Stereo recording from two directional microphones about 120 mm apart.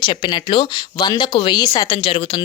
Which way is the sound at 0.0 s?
40° left (ahead or behind).